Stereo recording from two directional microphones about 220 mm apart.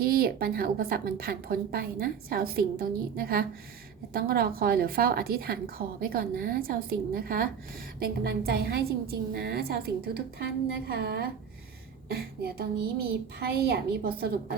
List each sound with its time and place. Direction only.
0.0 s a woman's voice: 45° right (ahead or behind)